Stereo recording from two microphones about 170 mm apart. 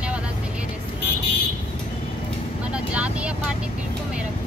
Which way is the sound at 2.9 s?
5° right (ahead or behind).